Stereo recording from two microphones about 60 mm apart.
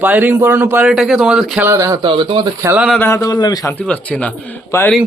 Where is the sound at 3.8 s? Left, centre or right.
Left.